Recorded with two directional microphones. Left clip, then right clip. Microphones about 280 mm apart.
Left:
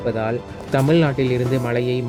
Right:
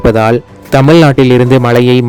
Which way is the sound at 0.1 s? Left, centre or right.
Right.